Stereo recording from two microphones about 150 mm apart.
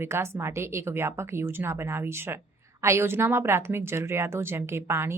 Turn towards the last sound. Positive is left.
turn(degrees=-15)  # may be behind; listen again after turning